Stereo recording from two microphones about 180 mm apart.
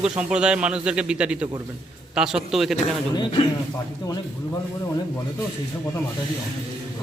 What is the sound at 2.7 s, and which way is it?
Speech, 25° left (ahead or behind).